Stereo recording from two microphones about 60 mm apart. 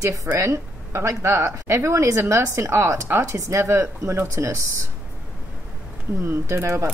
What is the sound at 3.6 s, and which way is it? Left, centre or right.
Speech, right.